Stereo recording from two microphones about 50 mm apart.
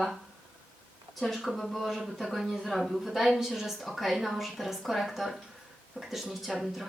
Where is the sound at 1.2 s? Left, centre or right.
Centre.